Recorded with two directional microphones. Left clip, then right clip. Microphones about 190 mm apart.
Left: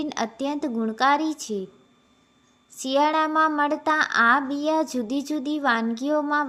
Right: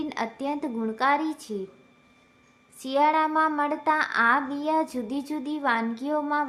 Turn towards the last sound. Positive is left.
turn(degrees=20)  # may be behind; listen again after turning